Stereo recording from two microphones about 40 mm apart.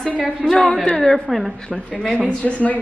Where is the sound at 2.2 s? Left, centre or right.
Left.